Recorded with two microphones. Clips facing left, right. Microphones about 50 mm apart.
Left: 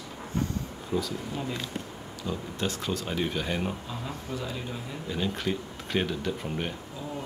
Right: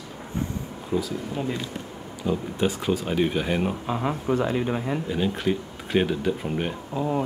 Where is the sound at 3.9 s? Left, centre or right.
Right.